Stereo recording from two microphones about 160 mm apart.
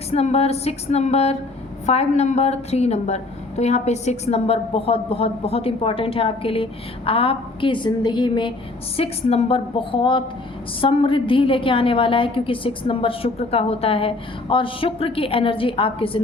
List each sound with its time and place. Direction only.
0.1 s a woman's voice: 40° left (ahead or behind)